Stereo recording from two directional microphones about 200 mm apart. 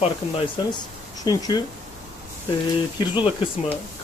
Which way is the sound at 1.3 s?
20° left (ahead or behind).